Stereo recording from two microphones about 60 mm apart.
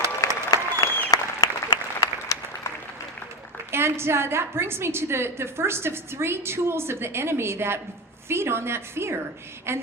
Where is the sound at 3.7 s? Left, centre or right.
Right.